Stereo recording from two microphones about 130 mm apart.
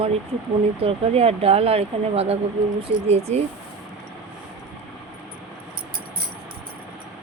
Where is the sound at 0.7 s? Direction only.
50° right (ahead or behind).